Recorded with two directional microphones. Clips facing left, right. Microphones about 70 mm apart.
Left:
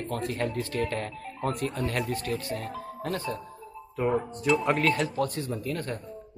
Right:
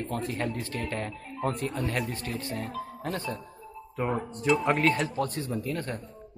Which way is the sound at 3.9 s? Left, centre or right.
Centre.